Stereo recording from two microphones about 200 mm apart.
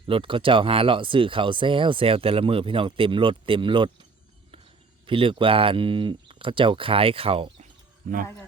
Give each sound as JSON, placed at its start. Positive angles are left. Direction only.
{"t": 0.0, "sound": "speech", "side_deg": -25}
{"t": 5.0, "sound": "speech", "side_deg": -25}